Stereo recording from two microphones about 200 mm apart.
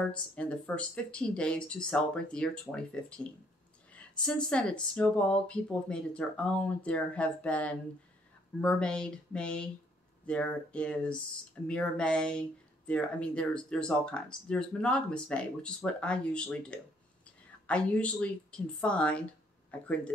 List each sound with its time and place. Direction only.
0.0 s speech: 5° left (ahead or behind)